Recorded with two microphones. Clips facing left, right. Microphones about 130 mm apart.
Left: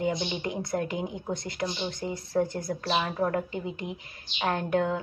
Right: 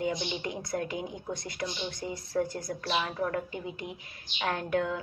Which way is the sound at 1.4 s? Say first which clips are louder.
Left 4 dB; 25° left (ahead or behind).